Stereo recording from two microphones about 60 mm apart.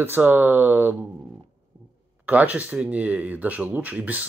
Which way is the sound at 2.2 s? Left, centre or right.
Right.